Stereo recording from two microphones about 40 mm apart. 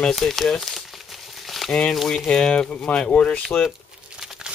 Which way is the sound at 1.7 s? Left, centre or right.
Centre.